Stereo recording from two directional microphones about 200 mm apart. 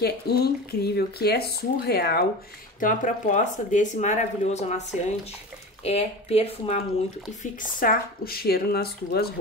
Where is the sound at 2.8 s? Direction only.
40° left (ahead or behind).